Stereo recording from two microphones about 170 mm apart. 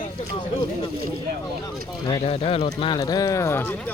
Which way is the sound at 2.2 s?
35° left (ahead or behind).